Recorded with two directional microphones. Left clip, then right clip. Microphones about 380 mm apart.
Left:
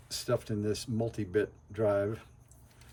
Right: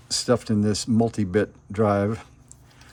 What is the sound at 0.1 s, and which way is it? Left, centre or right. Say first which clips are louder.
Speech: right 10 dB; centre.